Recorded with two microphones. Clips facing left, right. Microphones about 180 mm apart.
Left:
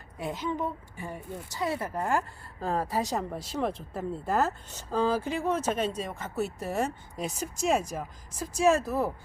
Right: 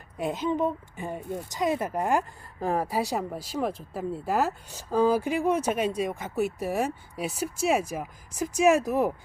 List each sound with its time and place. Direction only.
0.2 s speech: 20° right (ahead or behind)